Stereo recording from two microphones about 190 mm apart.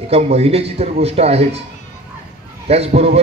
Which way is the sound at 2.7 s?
35° right (ahead or behind).